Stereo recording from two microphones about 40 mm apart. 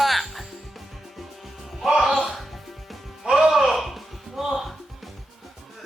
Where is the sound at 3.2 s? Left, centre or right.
Centre.